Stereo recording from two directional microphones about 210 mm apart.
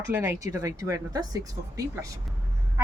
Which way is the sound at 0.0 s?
15° right (ahead or behind).